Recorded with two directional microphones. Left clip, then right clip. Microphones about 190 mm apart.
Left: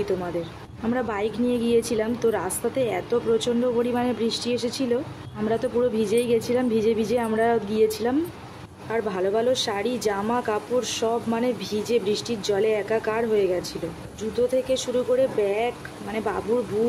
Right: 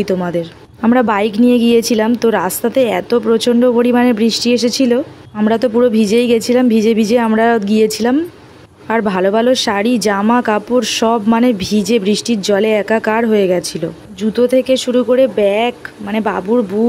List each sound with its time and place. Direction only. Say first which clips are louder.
0.8 s a woman's voice: right 13 dB; 50° right (ahead or behind)